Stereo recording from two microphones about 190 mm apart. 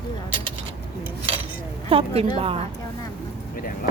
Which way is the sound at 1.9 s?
30° right (ahead or behind).